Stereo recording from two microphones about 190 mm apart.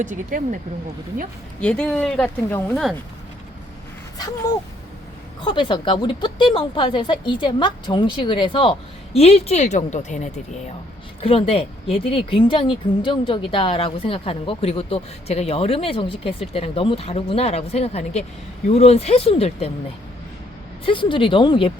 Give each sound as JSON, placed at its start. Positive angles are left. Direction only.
{"t": 0.0, "sound": "speech", "side_deg": -45}
{"t": 1.6, "sound": "speech", "side_deg": 5}
{"t": 5.5, "sound": "a woman's voice", "side_deg": 25}
{"t": 20.8, "sound": "speech", "side_deg": 25}